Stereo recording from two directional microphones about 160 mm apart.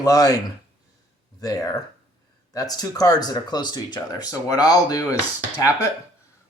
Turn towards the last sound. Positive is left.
turn(degrees=20)  # may be behind; listen again after turning